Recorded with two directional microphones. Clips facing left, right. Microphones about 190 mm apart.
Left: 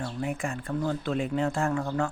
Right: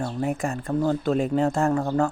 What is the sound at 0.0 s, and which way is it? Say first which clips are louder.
Speech: right 5 dB; 40° right (ahead or behind).